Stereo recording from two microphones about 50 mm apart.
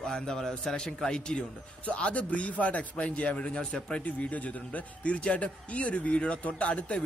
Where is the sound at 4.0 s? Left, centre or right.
Left.